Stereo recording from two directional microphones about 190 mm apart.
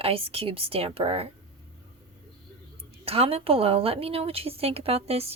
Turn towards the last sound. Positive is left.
turn(degrees=-30)  # may be behind; listen again after turning